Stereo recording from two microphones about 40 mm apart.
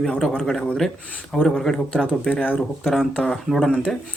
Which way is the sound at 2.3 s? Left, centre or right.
Left.